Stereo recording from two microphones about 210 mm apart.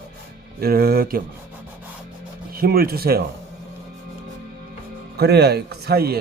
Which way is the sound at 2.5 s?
45° right (ahead or behind).